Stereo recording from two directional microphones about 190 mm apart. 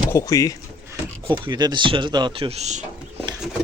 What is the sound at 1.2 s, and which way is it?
Speech, 25° right (ahead or behind).